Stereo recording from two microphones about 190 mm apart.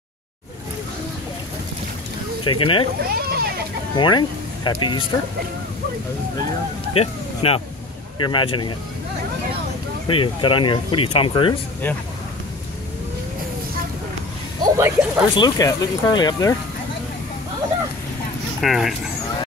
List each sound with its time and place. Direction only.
2.4 s speech: 25° left (ahead or behind)
3.0 s a child's voice: 55° right (ahead or behind)
3.9 s speech: 25° left (ahead or behind)
6.9 s speech: 30° left (ahead or behind)
10.0 s speech: 25° left (ahead or behind)
14.6 s speech: 15° right (ahead or behind)
15.3 s speech: 20° left (ahead or behind)
18.6 s speech: centre (ahead or behind)